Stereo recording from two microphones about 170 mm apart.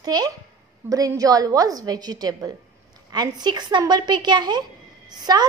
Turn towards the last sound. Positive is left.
turn(degrees=-25)  # may be behind; listen again after turning